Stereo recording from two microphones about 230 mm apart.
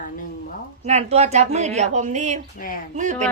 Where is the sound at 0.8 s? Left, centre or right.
Right.